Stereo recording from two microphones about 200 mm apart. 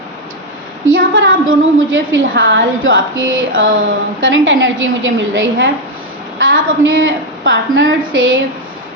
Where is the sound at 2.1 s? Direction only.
60° right (ahead or behind).